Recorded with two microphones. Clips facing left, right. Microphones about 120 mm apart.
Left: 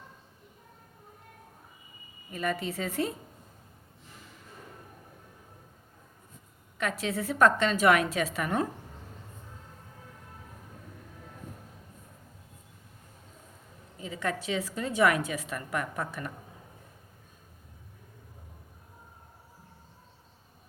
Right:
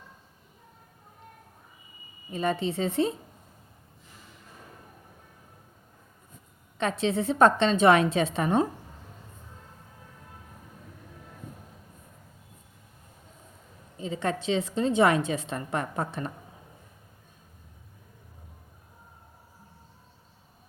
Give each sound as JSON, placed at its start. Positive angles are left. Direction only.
{"t": 2.3, "sound": "a woman's voice", "side_deg": -30}
{"t": 6.7, "sound": "a woman's voice", "side_deg": -25}
{"t": 14.0, "sound": "a sound", "side_deg": -30}
{"t": 14.4, "sound": "a woman's voice", "side_deg": -25}